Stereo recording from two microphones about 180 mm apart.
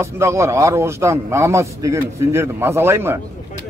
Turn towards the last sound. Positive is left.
turn(degrees=-15)  # may be behind; listen again after turning